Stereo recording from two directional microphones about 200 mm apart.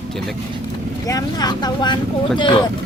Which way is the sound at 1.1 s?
20° left (ahead or behind).